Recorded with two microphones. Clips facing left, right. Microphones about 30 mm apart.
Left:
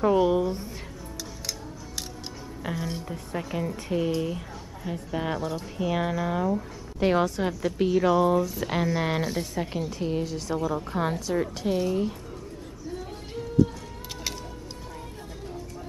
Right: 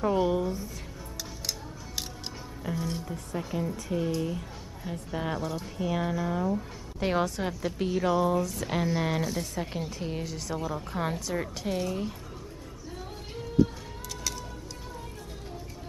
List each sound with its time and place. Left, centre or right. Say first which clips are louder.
0.0 s a woman's voice: left 4 dB; centre
2.8 s a woman's voice: left 1 dB; centre
6.5 s a woman's voice: left 3 dB; centre
13.6 s music: left 2 dB; centre